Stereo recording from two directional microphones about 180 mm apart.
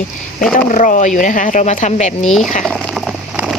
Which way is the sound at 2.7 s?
5° left (ahead or behind).